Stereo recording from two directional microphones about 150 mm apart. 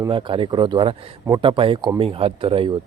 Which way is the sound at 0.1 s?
35° right (ahead or behind).